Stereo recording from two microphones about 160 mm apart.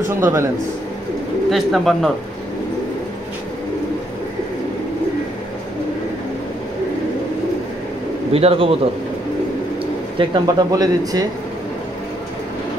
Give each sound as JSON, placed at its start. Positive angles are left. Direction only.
{"t": 0.1, "sound": "a man's voice", "side_deg": -15}
{"t": 1.5, "sound": "speech", "side_deg": 0}
{"t": 8.3, "sound": "speech", "side_deg": -40}
{"t": 10.1, "sound": "speech", "side_deg": -25}